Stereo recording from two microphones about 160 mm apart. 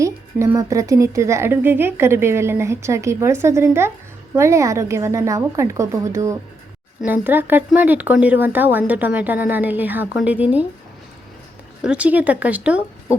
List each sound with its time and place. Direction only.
0.0 s a woman's voice: 20° right (ahead or behind)
11.8 s a woman's voice: 10° right (ahead or behind)